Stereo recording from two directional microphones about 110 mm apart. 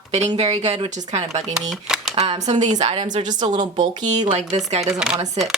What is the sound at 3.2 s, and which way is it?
Speech, 40° right (ahead or behind).